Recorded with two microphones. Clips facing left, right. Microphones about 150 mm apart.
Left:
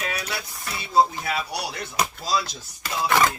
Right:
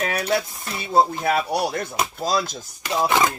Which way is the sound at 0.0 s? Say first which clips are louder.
Right 8 dB; 50° right (ahead or behind).